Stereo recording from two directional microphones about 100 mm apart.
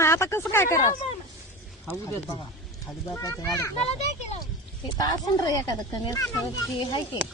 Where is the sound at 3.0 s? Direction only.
30° left (ahead or behind).